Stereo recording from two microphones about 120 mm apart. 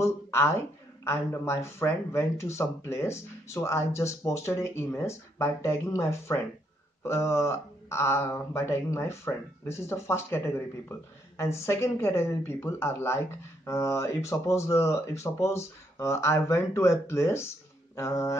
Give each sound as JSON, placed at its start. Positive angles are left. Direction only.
{"t": 0.0, "sound": "speech", "side_deg": 20}